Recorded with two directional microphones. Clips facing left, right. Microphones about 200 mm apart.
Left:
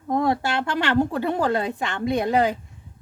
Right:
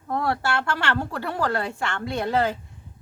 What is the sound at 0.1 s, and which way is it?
Speech, 15° left (ahead or behind).